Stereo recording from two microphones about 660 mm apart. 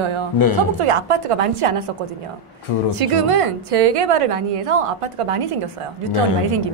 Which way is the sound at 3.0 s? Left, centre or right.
Right.